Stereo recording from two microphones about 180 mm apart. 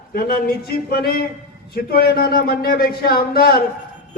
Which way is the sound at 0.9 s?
60° left (ahead or behind).